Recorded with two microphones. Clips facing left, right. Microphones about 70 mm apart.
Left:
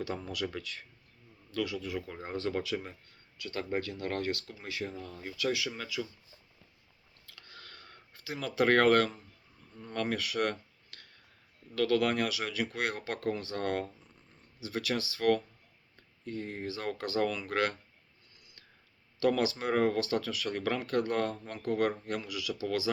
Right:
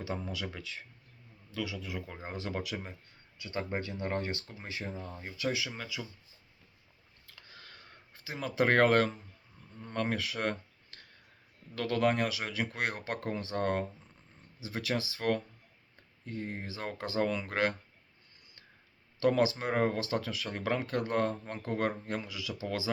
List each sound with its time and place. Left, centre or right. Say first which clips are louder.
0.3 s speech: left 3 dB; centre
7.3 s a sound: left 1 dB; centre
9.9 s speech: left 1 dB; right
19.2 s speech: right 1 dB; right